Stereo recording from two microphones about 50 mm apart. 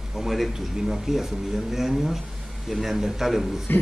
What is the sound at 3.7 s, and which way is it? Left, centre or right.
Speech, left.